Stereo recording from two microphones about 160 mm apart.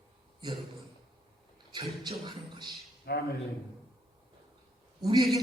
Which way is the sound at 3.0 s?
80° left.